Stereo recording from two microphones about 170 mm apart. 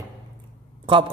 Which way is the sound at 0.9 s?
30° right (ahead or behind).